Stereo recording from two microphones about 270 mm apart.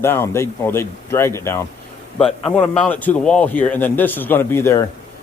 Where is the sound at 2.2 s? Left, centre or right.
Left.